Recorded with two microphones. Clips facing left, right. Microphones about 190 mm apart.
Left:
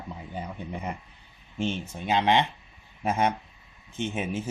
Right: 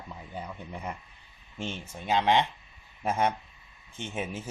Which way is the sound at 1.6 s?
20° left (ahead or behind).